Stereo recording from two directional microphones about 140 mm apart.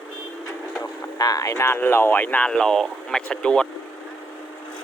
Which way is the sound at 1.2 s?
25° left (ahead or behind).